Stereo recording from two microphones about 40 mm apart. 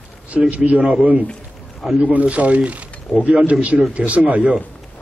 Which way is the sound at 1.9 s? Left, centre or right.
Right.